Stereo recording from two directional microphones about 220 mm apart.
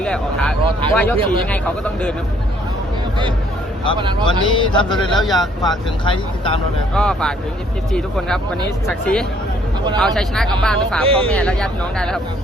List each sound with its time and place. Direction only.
0.0 s speech: 5° left (ahead or behind)
4.3 s speech: 20° left (ahead or behind)
4.9 s speech: centre (ahead or behind)
5.6 s speech: 20° left (ahead or behind)
6.9 s speech: 5° left (ahead or behind)
8.9 s speech: 5° left (ahead or behind)
11.0 s speech: 25° right (ahead or behind)
11.3 s speech: 5° left (ahead or behind)